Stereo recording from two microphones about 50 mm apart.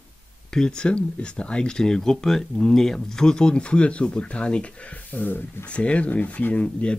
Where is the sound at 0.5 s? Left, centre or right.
Centre; by 5.7 s left.